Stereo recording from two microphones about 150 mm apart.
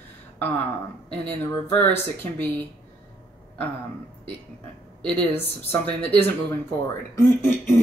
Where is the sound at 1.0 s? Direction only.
10° left (ahead or behind).